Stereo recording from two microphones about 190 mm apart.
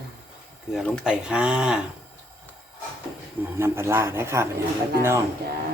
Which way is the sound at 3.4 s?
15° right (ahead or behind).